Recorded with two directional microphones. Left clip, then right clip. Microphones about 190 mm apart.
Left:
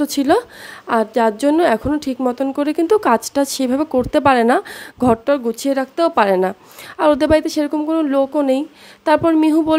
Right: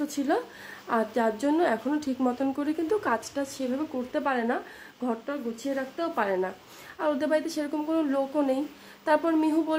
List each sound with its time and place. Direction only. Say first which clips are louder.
0.0 s a woman's voice: left 12 dB; 50° left (ahead or behind)